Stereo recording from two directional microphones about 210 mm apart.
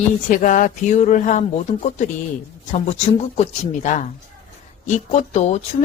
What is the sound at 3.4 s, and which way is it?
Speech, 35° left (ahead or behind).